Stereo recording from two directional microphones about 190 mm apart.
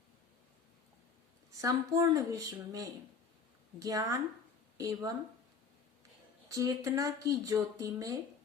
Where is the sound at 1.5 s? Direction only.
20° right (ahead or behind).